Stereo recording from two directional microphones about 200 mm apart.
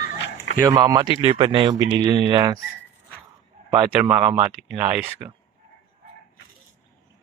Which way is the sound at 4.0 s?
5° right (ahead or behind).